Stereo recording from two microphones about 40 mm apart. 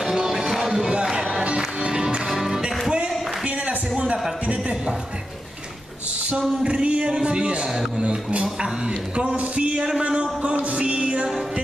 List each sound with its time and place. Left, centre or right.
0.0 s music: centre
6.6 s a man's voice: right